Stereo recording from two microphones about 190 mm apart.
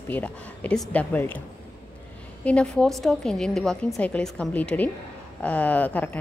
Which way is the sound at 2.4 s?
5° left (ahead or behind).